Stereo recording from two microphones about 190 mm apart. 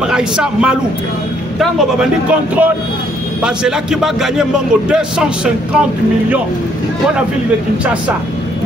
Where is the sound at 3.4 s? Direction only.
5° right (ahead or behind).